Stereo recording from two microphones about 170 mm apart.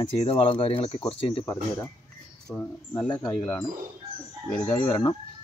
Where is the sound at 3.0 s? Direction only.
25° left (ahead or behind).